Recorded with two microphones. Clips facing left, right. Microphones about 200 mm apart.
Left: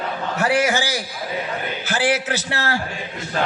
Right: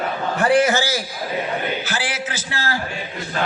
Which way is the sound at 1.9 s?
55° left (ahead or behind).